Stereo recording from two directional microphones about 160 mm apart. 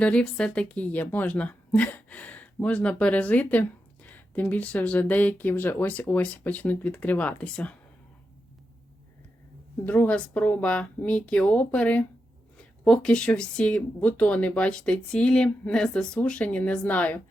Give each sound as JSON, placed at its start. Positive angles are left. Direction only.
{"t": 0.0, "sound": "speech", "side_deg": 5}
{"t": 9.8, "sound": "speech", "side_deg": 10}